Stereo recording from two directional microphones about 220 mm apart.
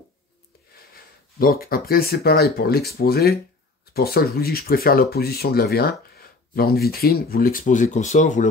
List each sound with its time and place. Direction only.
1.4 s speech: 40° left (ahead or behind)